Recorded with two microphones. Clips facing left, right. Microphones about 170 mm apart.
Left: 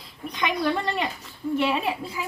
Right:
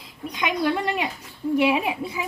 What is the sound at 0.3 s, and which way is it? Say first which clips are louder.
Speech: right 1 dB; 10° right (ahead or behind).